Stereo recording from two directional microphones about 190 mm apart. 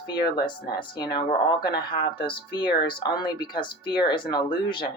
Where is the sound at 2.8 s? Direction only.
25° left (ahead or behind).